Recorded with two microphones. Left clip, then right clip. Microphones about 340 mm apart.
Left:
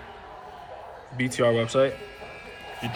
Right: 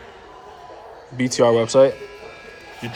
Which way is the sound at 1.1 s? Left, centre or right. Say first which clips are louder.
Right 6 dB; centre.